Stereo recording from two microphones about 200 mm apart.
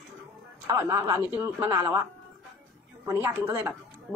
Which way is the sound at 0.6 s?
15° right (ahead or behind).